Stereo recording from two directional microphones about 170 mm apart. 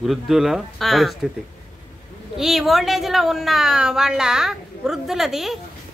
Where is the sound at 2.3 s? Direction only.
Centre (ahead or behind).